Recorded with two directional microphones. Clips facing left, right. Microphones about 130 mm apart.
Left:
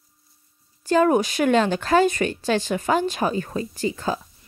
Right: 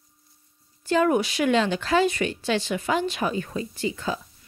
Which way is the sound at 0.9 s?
40° left (ahead or behind).